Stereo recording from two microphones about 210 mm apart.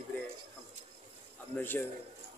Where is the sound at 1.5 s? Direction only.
10° left (ahead or behind).